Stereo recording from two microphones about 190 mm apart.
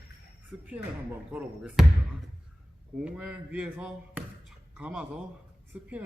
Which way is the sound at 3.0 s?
5° right (ahead or behind).